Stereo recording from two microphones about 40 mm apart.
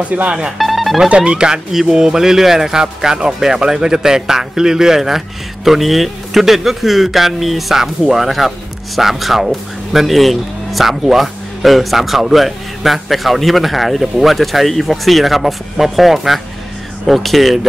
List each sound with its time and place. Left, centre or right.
0.0 s speech: right
0.6 s music: centre
1.0 s speech: right
1.7 s speech: centre